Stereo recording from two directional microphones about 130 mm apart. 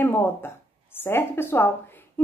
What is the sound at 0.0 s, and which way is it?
A woman's voice, 15° left (ahead or behind).